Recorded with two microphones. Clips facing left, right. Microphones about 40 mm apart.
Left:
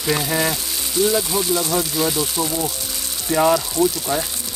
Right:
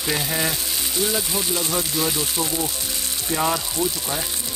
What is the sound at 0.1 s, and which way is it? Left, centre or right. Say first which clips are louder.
Speech: left 4 dB; centre.